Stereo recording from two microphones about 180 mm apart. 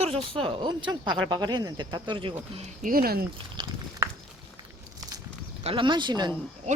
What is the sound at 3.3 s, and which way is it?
Speech, 25° right (ahead or behind).